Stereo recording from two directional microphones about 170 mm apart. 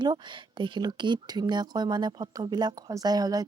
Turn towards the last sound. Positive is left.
turn(degrees=-20)  # may be behind; listen again after turning